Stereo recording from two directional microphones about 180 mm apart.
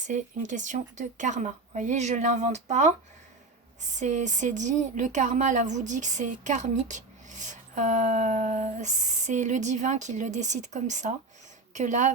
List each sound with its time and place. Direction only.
0.0 s speech: 45° right (ahead or behind)